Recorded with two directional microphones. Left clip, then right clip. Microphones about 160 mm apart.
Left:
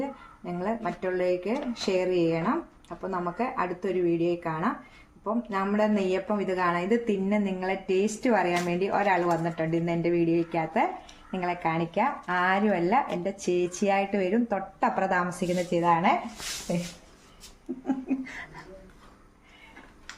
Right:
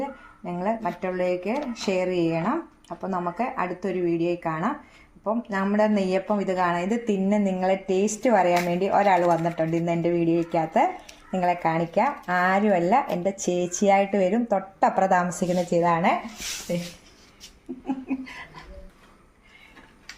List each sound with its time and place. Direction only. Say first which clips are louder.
0.4 s speech: right 4 dB; 35° right (ahead or behind)
16.7 s a sound: right 2 dB; 10° left (ahead or behind)
17.7 s speech: left 1 dB; 5° right (ahead or behind)